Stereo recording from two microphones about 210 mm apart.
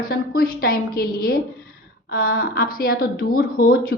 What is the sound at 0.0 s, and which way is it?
Speech, 45° left (ahead or behind).